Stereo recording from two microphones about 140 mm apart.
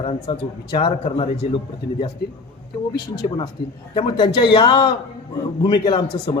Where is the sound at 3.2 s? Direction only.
30° left (ahead or behind).